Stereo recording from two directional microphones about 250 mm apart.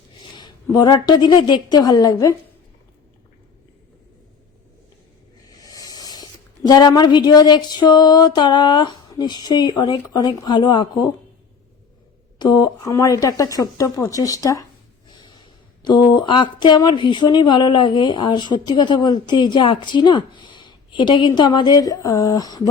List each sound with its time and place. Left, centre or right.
0.2 s a woman's voice: centre
5.6 s snake: centre
6.7 s speech: centre
12.4 s speech: centre
15.1 s snort: centre
15.8 s speech: centre